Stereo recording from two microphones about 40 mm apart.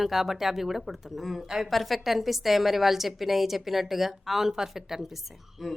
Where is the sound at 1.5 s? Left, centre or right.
Centre.